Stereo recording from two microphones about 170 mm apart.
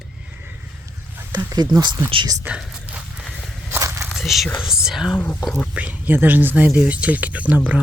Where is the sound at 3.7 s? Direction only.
15° right (ahead or behind).